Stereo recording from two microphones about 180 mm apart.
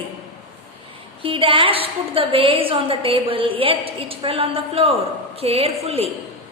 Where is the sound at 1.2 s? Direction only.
30° right (ahead or behind).